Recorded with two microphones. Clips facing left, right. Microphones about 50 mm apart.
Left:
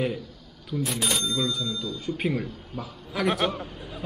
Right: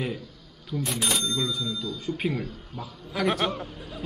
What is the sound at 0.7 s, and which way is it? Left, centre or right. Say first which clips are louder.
A man's voice: left 1 dB; centre.